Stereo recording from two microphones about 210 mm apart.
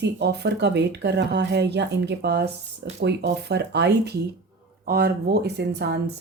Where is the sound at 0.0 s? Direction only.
50° right (ahead or behind).